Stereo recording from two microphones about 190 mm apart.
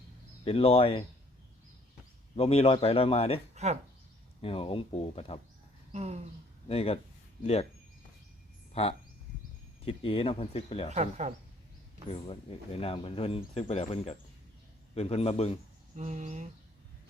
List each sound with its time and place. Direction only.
0.4 s speech: 30° left (ahead or behind)
2.3 s speech: 30° left (ahead or behind)
3.5 s a sound: 35° right (ahead or behind)
4.4 s speech: 30° left (ahead or behind)
5.9 s speech: 35° right (ahead or behind)
6.7 s speech: 30° left (ahead or behind)
8.7 s speech: 30° left (ahead or behind)
10.9 s speech: 35° right (ahead or behind)
12.0 s speech: 30° left (ahead or behind)
16.0 s speech: 40° right (ahead or behind)